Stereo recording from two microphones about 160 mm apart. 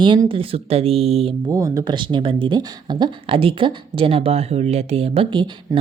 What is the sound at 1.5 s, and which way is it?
Speech, 20° right (ahead or behind).